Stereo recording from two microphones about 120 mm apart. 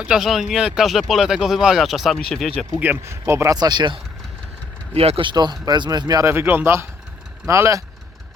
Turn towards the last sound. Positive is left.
turn(degrees=-25)  # may be behind; listen again after turning